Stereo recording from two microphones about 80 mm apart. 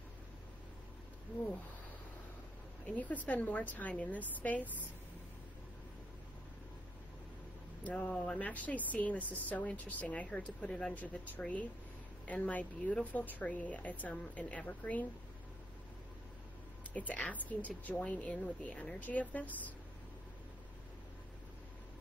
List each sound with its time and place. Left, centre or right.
3.0 s speech: centre
7.8 s speech: centre
16.9 s speech: centre